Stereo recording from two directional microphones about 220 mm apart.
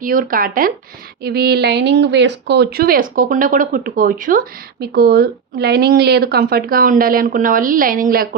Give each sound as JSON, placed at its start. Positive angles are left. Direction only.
{"t": 0.0, "sound": "speech", "side_deg": -40}